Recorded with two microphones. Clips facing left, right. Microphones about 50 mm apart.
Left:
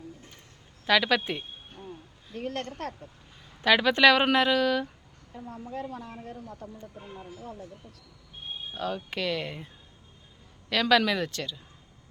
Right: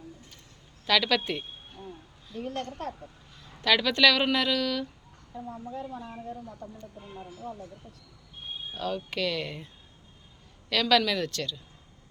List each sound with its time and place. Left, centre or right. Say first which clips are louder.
0.9 s speech: left 1 dB; centre
2.3 s a woman's voice: left 1 dB; left
3.6 s a woman's voice: left 2 dB; left
5.7 s speech: left 4 dB; left
8.7 s speech: even; centre
10.7 s speech: left 1 dB; centre